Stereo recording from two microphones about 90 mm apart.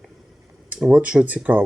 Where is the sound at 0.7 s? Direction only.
5° right (ahead or behind).